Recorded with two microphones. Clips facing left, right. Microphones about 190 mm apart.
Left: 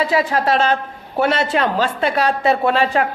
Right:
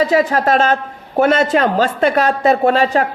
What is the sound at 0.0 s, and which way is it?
A woman's voice, 40° right (ahead or behind).